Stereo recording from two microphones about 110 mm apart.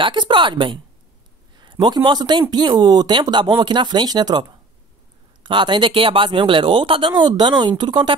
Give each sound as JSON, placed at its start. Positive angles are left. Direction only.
{"t": 0.0, "sound": "speech", "side_deg": -45}